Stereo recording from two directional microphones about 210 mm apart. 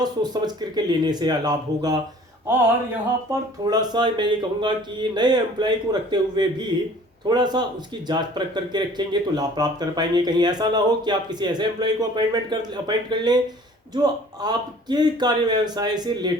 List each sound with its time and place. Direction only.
0.0 s speech: 20° right (ahead or behind)
3.7 s speech: 20° right (ahead or behind)